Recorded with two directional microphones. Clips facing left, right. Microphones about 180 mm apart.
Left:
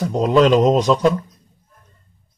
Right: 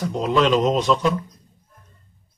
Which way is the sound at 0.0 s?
40° left (ahead or behind).